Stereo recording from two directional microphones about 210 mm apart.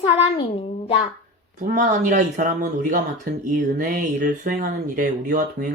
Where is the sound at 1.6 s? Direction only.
40° right (ahead or behind).